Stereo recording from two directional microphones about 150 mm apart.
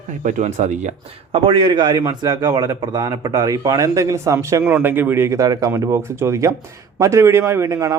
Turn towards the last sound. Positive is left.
turn(degrees=-25)  # may be behind; listen again after turning